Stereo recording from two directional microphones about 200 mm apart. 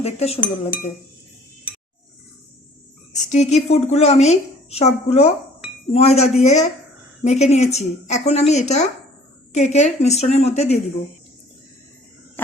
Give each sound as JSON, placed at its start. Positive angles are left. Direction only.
{"t": 0.0, "sound": "a woman's voice", "side_deg": 30}
{"t": 3.3, "sound": "a woman's voice", "side_deg": 35}